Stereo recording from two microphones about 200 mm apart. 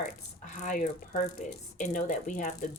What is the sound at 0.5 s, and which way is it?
Speech, 40° left (ahead or behind).